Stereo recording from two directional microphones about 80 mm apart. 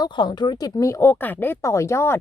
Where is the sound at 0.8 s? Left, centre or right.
Left.